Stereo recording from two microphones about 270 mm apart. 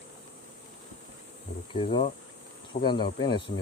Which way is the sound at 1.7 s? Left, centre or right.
Left.